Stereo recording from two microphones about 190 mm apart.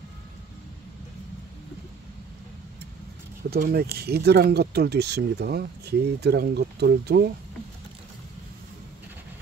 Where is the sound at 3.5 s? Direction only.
55° right (ahead or behind).